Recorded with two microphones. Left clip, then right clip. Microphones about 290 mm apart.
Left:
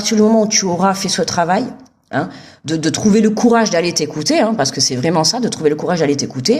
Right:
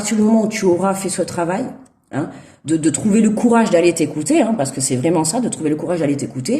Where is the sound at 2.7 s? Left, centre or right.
Left.